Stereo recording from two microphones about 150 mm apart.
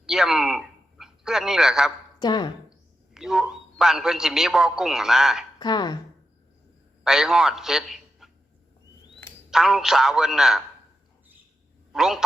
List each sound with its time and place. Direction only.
0.0 s a sound: centre (ahead or behind)
2.1 s speech: 30° left (ahead or behind)
3.2 s a man's voice: 5° right (ahead or behind)
5.5 s speech: 30° left (ahead or behind)
7.0 s a man's voice: 5° right (ahead or behind)
9.5 s a man's voice: 5° right (ahead or behind)
11.9 s a man's voice: 5° right (ahead or behind)